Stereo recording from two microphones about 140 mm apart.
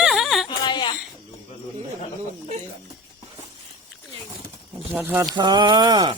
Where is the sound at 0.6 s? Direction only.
35° left (ahead or behind).